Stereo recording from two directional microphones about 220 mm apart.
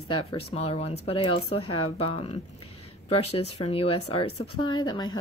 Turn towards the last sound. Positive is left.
turn(degrees=20)  # may be behind; listen again after turning